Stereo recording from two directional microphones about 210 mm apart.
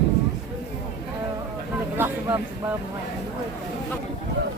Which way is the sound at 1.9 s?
10° right (ahead or behind).